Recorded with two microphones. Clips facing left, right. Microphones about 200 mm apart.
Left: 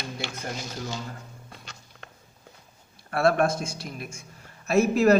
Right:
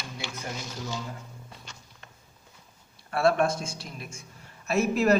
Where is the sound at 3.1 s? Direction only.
50° left (ahead or behind).